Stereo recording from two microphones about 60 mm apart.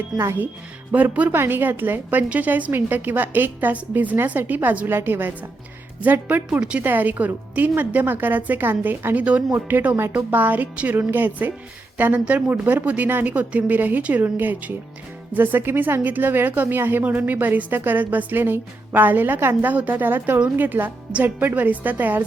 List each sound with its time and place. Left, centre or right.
0.1 s speech: centre
0.9 s a woman's voice: right
4.9 s a woman's voice: right
6.6 s speech: centre
6.8 s a woman's voice: right